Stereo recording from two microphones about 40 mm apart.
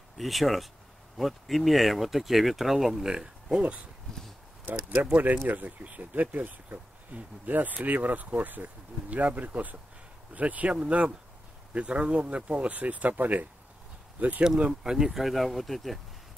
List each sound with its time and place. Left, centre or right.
0.2 s speech: centre
4.7 s speech: right
5.1 s speech: right
14.7 s speech: centre
15.0 s speech: centre